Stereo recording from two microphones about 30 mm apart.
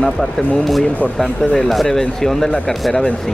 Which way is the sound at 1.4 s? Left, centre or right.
Left.